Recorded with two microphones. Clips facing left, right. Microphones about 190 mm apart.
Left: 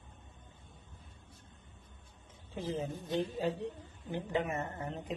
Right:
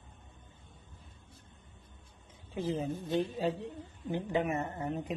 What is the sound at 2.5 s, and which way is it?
Speech, 15° right (ahead or behind).